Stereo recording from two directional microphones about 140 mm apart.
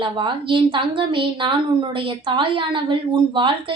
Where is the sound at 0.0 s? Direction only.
35° right (ahead or behind).